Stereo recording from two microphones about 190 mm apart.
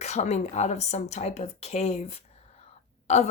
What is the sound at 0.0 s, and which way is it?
Speech, 35° left (ahead or behind).